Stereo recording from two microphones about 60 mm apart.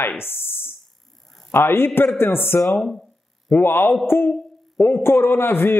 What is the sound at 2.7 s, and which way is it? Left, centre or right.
Speech, centre.